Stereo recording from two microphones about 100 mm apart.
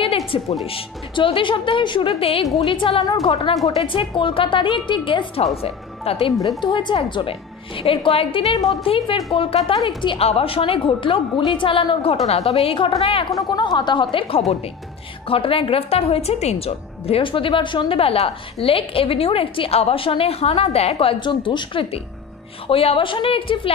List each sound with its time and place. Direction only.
0.3 s a woman's voice: 65° left (ahead or behind)
5.6 s speech: 80° left
6.6 s a woman's voice: 50° left (ahead or behind); by 9.6 s 70° left (ahead or behind)
9.8 s a woman's voice: 55° left (ahead or behind)
10.2 s a woman's voice: 75° left (ahead or behind)
12.3 s a woman's voice: 90° left; by 13.3 s 65° left (ahead or behind)
13.3 s a woman's voice: 40° left (ahead or behind)
14.1 s a woman's voice: 65° left (ahead or behind)